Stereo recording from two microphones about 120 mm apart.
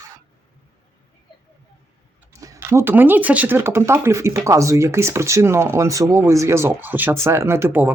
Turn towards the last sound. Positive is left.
turn(degrees=-15)  # may be behind; listen again after turning